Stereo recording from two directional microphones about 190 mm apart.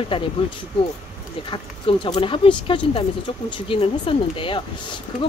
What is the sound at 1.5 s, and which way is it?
Speech, 25° left (ahead or behind).